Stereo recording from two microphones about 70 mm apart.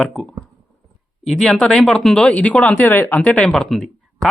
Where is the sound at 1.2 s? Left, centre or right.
Centre; by 3.0 s left.